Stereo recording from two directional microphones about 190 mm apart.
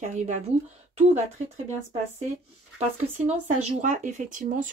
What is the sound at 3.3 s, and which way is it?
Speech, 35° right (ahead or behind).